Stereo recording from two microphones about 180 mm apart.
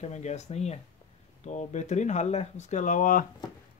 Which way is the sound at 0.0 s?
40° left (ahead or behind).